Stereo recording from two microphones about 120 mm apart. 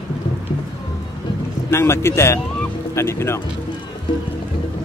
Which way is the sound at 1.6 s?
20° left (ahead or behind).